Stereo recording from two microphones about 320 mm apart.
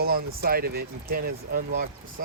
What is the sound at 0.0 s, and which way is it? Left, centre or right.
Speech, right.